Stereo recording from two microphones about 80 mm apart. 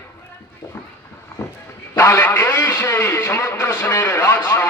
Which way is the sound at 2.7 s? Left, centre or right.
Left.